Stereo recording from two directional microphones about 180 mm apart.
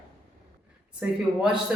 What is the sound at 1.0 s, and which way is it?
Speech, 5° right (ahead or behind).